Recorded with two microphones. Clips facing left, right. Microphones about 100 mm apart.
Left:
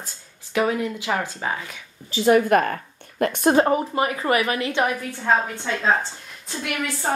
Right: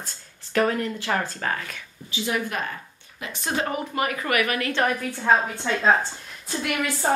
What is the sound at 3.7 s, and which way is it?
Speech, 30° left (ahead or behind).